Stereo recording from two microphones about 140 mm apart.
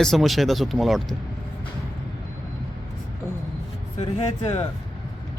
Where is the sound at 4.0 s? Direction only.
45° left (ahead or behind).